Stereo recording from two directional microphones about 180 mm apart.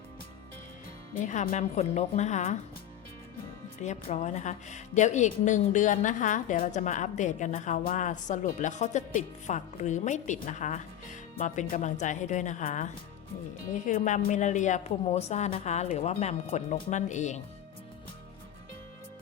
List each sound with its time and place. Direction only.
1.2 s a woman's voice: 40° left (ahead or behind)
3.8 s a woman's voice: 45° left (ahead or behind)